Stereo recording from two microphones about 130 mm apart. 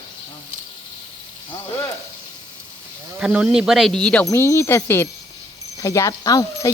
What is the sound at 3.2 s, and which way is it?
Speech, 5° right (ahead or behind).